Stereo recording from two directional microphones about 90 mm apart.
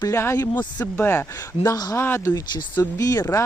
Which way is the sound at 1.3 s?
40° left (ahead or behind).